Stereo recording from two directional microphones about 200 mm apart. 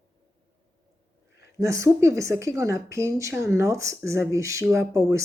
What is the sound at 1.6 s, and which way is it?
A woman's voice, 15° right (ahead or behind).